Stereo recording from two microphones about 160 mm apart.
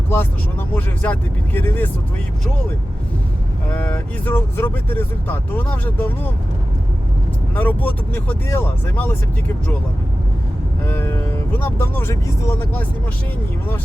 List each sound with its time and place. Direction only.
0.7 s speech: 10° left (ahead or behind)
3.7 s speech: 10° left (ahead or behind)
7.5 s speech: 10° left (ahead or behind)
10.8 s speech: 15° left (ahead or behind)